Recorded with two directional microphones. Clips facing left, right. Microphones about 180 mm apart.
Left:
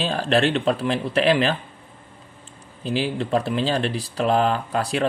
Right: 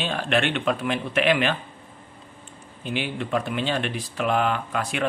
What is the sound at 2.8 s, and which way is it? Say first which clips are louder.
Speech: left 4 dB; 35° left (ahead or behind).